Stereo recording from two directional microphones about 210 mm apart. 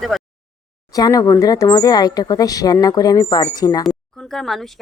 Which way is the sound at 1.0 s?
15° left (ahead or behind).